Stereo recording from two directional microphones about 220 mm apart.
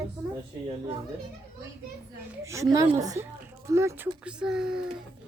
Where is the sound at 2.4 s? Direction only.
15° right (ahead or behind).